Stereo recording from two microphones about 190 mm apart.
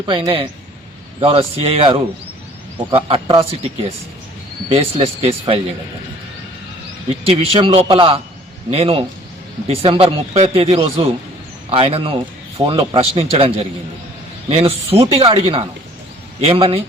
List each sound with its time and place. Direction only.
0.0 s speech: 25° right (ahead or behind)
7.3 s speech: 30° right (ahead or behind)